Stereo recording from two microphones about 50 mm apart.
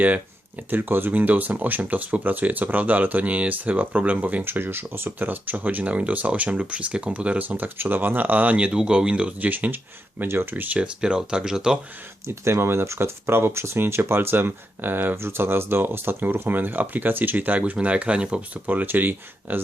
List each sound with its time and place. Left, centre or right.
0.7 s speech: right
4.4 s speech: right
8.6 s speech: right
9.5 s speech: right
10.2 s speech: right
10.5 s speech: right
10.8 s speech: centre
12.2 s speech: right
18.5 s speech: right